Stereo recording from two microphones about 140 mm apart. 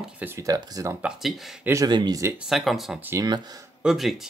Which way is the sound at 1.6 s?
25° right (ahead or behind).